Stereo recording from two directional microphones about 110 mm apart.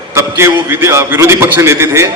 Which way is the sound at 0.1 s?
25° right (ahead or behind).